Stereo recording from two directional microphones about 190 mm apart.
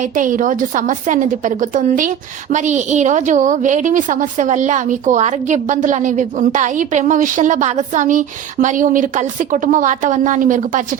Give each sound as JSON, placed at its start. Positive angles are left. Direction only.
{"t": 0.0, "sound": "a woman's voice", "side_deg": -45}